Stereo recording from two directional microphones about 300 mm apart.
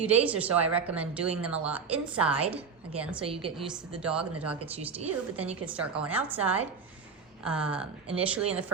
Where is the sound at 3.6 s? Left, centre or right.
Centre.